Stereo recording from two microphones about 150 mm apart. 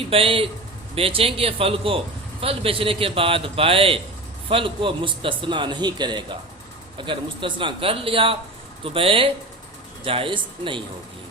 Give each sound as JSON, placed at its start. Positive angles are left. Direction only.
{"t": 0.1, "sound": "a man's voice", "side_deg": -40}